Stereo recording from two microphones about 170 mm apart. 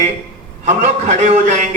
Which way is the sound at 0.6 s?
45° right (ahead or behind).